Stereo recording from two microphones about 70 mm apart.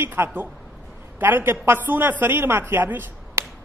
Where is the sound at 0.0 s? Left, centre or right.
Right.